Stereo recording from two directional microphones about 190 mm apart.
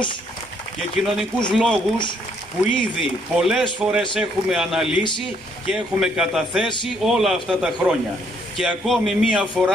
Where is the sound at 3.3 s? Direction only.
Centre (ahead or behind).